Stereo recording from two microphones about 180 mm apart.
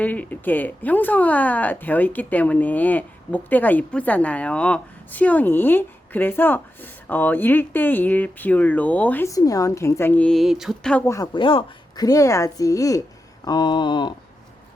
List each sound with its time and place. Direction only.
0.0 s speech: 10° left (ahead or behind)
11.0 s speech: 15° left (ahead or behind)
11.3 s speech: 30° left (ahead or behind)